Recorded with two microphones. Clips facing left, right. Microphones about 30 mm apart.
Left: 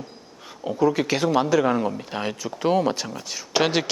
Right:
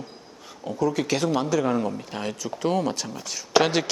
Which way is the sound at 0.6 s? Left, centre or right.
Centre.